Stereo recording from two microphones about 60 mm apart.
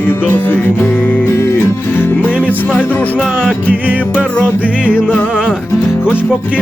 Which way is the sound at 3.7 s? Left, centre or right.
Right.